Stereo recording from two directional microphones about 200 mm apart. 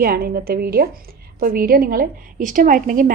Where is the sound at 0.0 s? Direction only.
50° right (ahead or behind).